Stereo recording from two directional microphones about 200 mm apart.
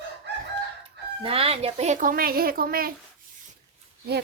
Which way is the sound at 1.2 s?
30° right (ahead or behind).